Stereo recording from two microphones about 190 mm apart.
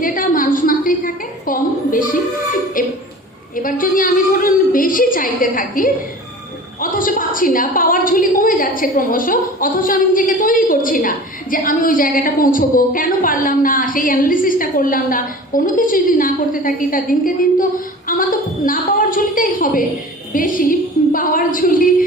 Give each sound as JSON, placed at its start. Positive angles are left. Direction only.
{"t": 0.0, "sound": "a sound", "side_deg": 45}
{"t": 2.8, "sound": "a woman's voice", "side_deg": 45}
{"t": 6.9, "sound": "a woman's voice", "side_deg": 45}